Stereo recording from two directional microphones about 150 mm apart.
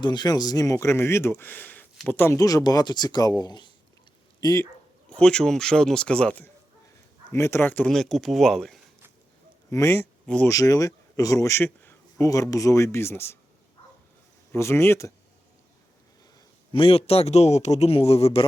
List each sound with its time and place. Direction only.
0.0 s speech: 30° left (ahead or behind)
5.0 s speech: 5° left (ahead or behind)
9.6 s speech: 20° left (ahead or behind)
10.5 s a man's voice: 20° left (ahead or behind)
14.5 s speech: 15° left (ahead or behind)
16.7 s a man's voice: 40° left (ahead or behind)